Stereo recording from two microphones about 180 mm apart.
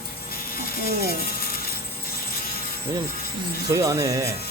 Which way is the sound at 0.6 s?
55° left (ahead or behind).